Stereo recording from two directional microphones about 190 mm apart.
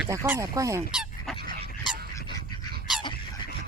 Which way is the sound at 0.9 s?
5° right (ahead or behind).